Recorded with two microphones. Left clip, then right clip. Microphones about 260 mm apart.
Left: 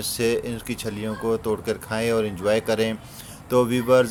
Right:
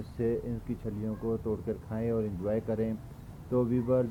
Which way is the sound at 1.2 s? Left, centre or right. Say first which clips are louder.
Left 10 dB; left.